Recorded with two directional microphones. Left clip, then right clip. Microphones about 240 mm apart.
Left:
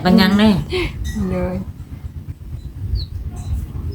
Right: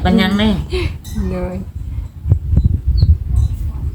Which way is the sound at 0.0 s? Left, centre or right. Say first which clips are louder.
Left 1 dB; left.